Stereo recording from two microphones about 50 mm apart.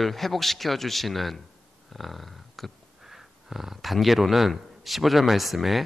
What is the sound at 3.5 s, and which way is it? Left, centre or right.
Speech, centre.